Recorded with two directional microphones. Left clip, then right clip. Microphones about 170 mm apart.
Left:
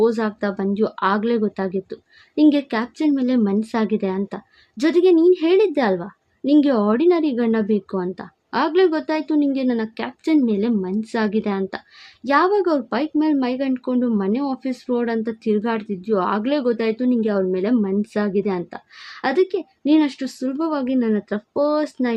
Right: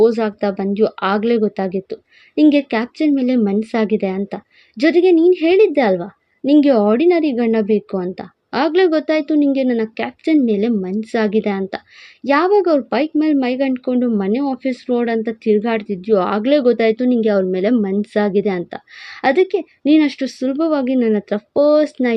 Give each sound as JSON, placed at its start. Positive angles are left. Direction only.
{"t": 0.0, "sound": "speech", "side_deg": -10}